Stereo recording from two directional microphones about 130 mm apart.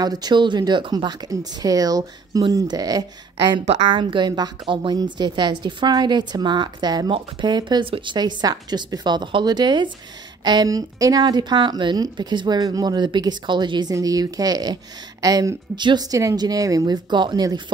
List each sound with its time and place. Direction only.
0.0 s a woman's voice: 30° right (ahead or behind)